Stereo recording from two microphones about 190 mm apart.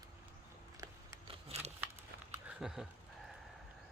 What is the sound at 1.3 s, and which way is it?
Scissors, 30° right (ahead or behind).